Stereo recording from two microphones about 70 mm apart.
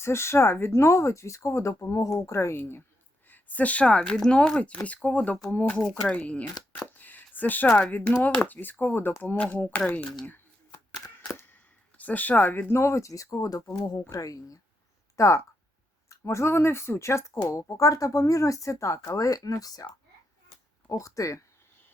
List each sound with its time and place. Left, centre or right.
0.0 s speech: left; by 6.5 s centre
7.0 s a sound: left
7.8 s speech: centre
11.9 s speech: left
12.7 s speech: left
15.1 s a sound: left
16.0 s speech: left
20.8 s speech: left